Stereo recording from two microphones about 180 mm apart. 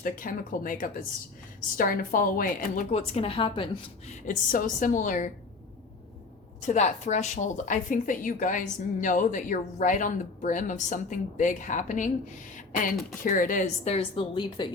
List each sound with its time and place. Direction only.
0.0 s a woman's voice: 50° left (ahead or behind); by 4.1 s 30° left (ahead or behind)
4.1 s a woman's voice: 45° left (ahead or behind)
6.7 s a woman's voice: 40° left (ahead or behind)